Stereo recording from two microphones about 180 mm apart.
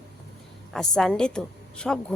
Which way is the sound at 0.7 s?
5° left (ahead or behind).